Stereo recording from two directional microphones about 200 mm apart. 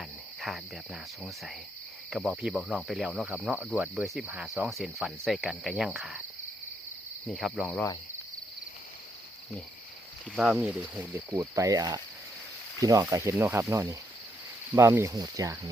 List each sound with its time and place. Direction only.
0.0 s cricket: centre (ahead or behind)
1.2 s speech: centre (ahead or behind)
7.3 s speech: centre (ahead or behind)
10.3 s speech: 5° right (ahead or behind)